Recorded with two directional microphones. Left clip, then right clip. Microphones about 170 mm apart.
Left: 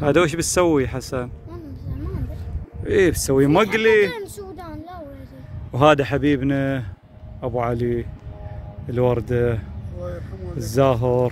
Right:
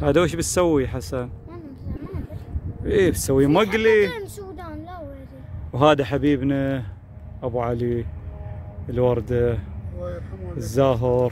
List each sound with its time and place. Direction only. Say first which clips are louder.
0.0 s speech: left 2 dB; 5° right (ahead or behind)
2.8 s speech: left 2 dB; 10° right (ahead or behind)
3.7 s a sound: left 1 dB; 5° right (ahead or behind)
5.7 s speech: left 2 dB; 5° right (ahead or behind)
10.6 s speech: left 1 dB; 5° right (ahead or behind)